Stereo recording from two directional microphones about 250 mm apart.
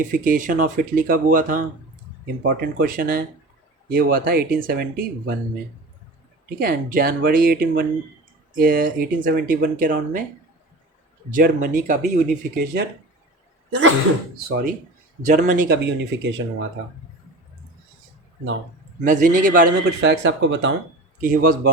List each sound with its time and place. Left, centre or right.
0.1 s speech: right
6.6 s speech: right
11.3 s speech: right
13.7 s sneeze: right
14.3 s speech: right
19.0 s speech: right
21.2 s speech: right